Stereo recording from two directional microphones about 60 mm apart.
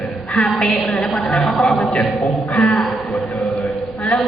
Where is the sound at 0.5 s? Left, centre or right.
Centre.